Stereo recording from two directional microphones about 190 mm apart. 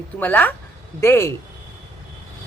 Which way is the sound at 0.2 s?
10° left (ahead or behind).